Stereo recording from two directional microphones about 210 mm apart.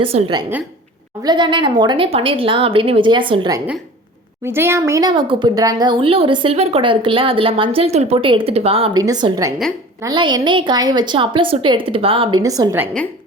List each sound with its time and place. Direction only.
0.0 s a woman's voice: 25° right (ahead or behind)
4.4 s a woman's voice: 10° right (ahead or behind)